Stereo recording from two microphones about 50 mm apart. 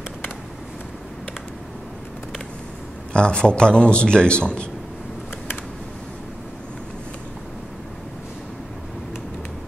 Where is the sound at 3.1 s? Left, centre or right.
Centre.